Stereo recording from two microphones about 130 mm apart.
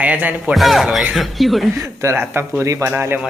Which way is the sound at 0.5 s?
Centre (ahead or behind).